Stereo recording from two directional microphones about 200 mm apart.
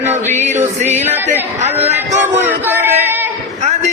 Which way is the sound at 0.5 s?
35° right (ahead or behind).